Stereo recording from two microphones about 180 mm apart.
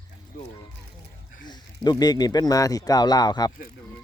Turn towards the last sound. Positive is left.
turn(degrees=20)  # may be behind; listen again after turning